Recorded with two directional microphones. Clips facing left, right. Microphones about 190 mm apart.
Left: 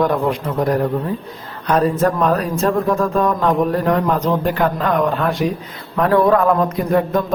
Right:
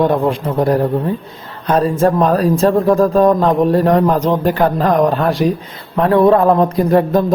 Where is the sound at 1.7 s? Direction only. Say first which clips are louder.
Right 3 dB; 30° right (ahead or behind).